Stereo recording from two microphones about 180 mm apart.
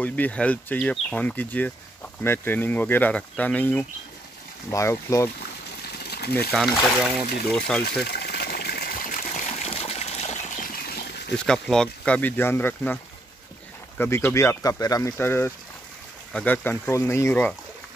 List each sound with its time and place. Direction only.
0.0 s speech: 10° left (ahead or behind)
5.9 s a sound: 60° left (ahead or behind)
6.5 s speech: centre (ahead or behind)
8.0 s water: 60° left (ahead or behind)
11.3 s speech: 5° left (ahead or behind)